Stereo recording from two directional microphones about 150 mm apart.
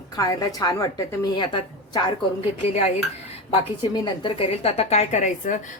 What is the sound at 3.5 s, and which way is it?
A woman's voice, 30° left (ahead or behind).